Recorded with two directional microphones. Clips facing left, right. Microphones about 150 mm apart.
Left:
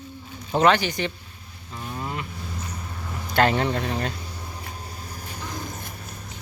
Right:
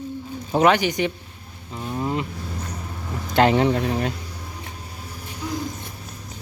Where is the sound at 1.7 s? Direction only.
20° right (ahead or behind).